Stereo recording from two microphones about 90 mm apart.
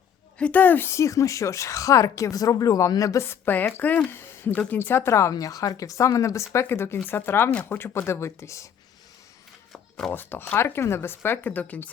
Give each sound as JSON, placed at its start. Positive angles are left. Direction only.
{"t": 0.3, "sound": "a woman's voice", "side_deg": 15}
{"t": 4.1, "sound": "a sound", "side_deg": 25}
{"t": 4.5, "sound": "a woman's voice", "side_deg": 15}
{"t": 10.1, "sound": "speech", "side_deg": 20}